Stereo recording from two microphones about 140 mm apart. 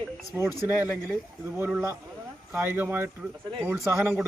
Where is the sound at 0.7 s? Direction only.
10° right (ahead or behind).